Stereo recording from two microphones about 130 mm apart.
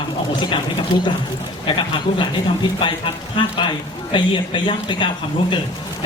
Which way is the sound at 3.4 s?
40° left (ahead or behind).